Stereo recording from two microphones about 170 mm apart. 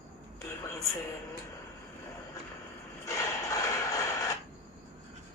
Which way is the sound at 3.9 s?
20° left (ahead or behind).